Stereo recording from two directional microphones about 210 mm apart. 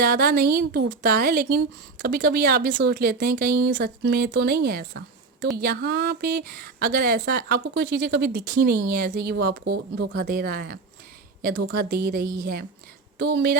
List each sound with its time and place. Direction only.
0.0 s a woman's voice: 50° right (ahead or behind)